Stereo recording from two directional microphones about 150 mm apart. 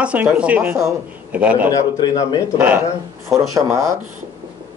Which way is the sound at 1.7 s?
25° left (ahead or behind).